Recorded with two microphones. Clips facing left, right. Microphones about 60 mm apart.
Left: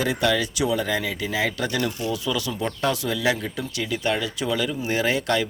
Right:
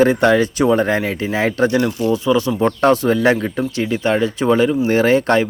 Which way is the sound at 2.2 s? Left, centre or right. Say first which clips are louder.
Right 10 dB; right.